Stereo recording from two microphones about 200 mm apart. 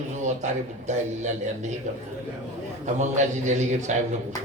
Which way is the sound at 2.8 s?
35° right (ahead or behind).